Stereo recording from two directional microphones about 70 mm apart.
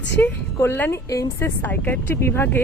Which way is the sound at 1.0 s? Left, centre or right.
Left.